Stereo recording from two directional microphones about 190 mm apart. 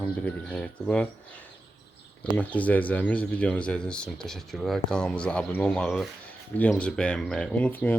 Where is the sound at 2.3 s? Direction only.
10° left (ahead or behind).